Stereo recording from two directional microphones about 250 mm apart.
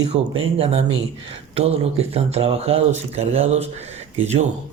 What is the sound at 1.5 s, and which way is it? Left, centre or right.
Speech, right.